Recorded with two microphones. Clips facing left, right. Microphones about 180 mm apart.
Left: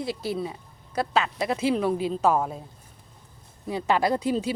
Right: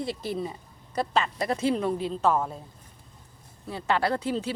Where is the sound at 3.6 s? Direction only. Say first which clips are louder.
Left 3 dB; 15° left (ahead or behind).